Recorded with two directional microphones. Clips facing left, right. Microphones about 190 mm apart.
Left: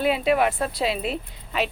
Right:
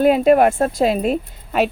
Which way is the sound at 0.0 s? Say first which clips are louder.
Right 8 dB; 45° right (ahead or behind).